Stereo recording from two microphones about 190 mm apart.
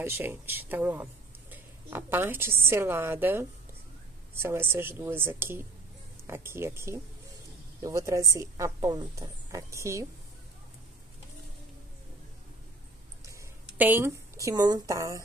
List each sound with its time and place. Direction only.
0.0 s a woman's voice: 10° right (ahead or behind)
13.7 s speech: 10° right (ahead or behind)